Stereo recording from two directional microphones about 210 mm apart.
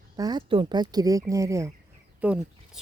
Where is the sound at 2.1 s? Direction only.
5° right (ahead or behind).